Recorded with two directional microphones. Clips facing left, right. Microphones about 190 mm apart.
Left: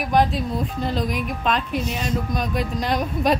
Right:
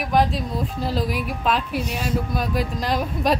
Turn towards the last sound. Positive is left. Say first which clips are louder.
# left 1 dB
turn(degrees=0)  # may be behind; listen again after turning